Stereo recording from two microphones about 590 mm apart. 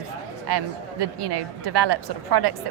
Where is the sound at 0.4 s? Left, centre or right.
Right.